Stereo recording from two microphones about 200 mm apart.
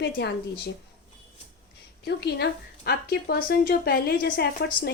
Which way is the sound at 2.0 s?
55° left (ahead or behind).